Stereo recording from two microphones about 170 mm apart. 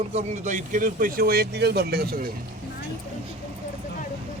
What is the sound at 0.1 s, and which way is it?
Speech, 45° right (ahead or behind).